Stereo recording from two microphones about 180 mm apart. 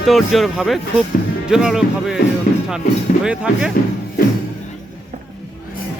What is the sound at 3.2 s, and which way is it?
Speech, 5° right (ahead or behind).